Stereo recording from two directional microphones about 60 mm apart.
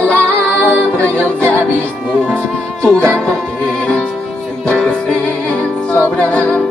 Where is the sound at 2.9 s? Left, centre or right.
Centre.